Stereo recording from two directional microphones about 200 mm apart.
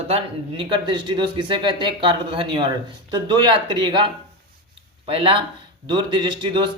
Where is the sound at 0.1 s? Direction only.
25° right (ahead or behind).